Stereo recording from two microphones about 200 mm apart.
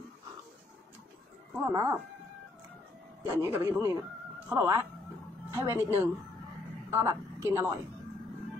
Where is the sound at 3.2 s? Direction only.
10° right (ahead or behind).